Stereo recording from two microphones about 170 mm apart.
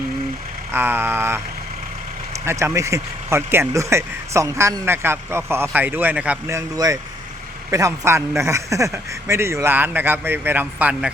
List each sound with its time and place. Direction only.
0.7 s speech: 10° right (ahead or behind)